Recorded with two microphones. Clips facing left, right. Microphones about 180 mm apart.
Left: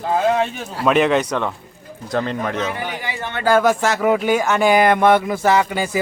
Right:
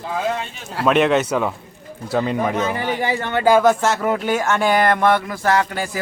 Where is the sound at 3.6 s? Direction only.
5° left (ahead or behind).